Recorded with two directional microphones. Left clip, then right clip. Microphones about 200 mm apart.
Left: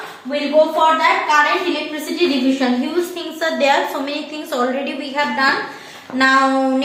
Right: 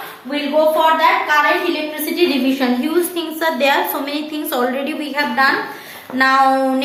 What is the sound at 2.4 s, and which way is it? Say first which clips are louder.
Speech: even; 25° right (ahead or behind).